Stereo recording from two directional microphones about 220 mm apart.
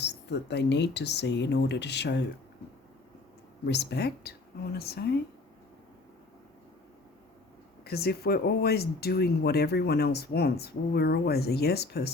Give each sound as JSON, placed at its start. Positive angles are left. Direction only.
{"t": 0.0, "sound": "speech", "side_deg": 50}
{"t": 3.7, "sound": "speech", "side_deg": 50}
{"t": 7.9, "sound": "speech", "side_deg": 45}